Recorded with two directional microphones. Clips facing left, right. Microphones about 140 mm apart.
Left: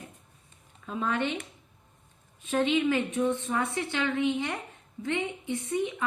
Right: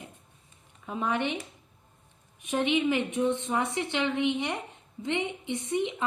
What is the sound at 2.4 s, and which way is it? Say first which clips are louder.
A woman's voice: left 1 dB; 15° right (ahead or behind).